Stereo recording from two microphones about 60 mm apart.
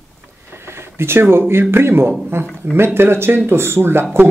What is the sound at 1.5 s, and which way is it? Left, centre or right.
Speech, right.